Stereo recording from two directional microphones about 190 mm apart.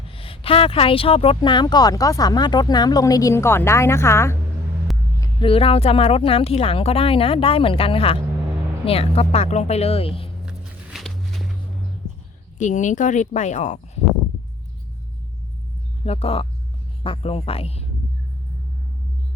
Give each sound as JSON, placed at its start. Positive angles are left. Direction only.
{"t": 0.1, "sound": "speech", "side_deg": 30}
{"t": 5.2, "sound": "a woman's voice", "side_deg": 25}
{"t": 10.4, "sound": "walk", "side_deg": -5}
{"t": 12.5, "sound": "a woman's voice", "side_deg": 40}
{"t": 16.0, "sound": "a woman's voice", "side_deg": 30}